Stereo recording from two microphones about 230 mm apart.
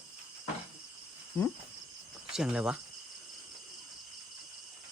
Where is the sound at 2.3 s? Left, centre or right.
Centre.